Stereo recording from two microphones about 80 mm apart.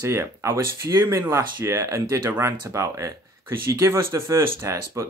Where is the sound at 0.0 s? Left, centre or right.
Right.